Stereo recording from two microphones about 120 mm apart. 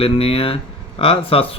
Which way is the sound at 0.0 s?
55° left (ahead or behind).